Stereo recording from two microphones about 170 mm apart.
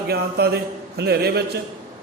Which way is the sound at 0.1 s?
70° right (ahead or behind).